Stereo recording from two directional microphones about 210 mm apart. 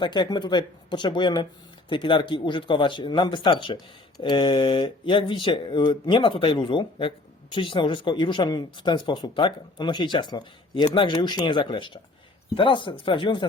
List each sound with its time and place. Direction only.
0.0 s speech: 20° left (ahead or behind)